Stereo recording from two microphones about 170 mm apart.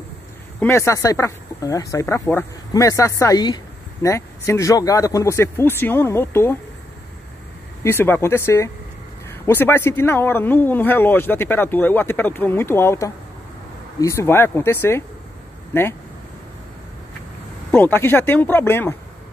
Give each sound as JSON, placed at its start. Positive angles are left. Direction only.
{"t": 0.6, "sound": "speech", "side_deg": 15}
{"t": 7.8, "sound": "speech", "side_deg": 15}
{"t": 17.6, "sound": "speech", "side_deg": 10}